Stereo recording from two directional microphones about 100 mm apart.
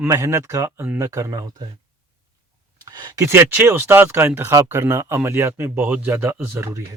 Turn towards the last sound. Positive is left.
turn(degrees=-25)  # may be behind; listen again after turning